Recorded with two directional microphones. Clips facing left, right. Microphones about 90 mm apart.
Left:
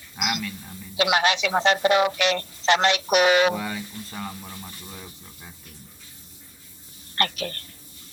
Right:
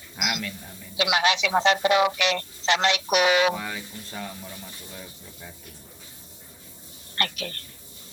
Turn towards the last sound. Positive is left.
turn(degrees=40)  # may be behind; listen again after turning